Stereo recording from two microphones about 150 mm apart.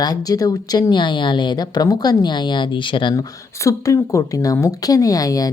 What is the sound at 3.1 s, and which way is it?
A woman's voice, 20° left (ahead or behind).